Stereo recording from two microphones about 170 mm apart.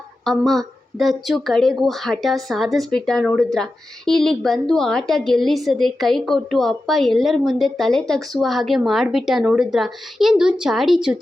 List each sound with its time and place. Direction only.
0.3 s speech: centre (ahead or behind)